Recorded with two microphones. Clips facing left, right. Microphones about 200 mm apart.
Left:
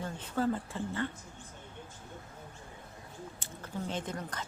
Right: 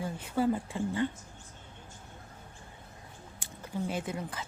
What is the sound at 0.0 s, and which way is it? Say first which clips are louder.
Speech: right 3 dB; 10° right (ahead or behind).